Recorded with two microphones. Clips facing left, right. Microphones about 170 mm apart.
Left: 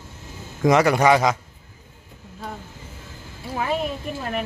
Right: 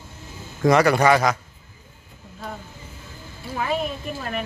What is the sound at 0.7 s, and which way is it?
Speech, 15° left (ahead or behind).